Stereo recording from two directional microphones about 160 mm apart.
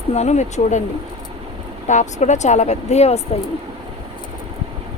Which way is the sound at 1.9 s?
50° left (ahead or behind).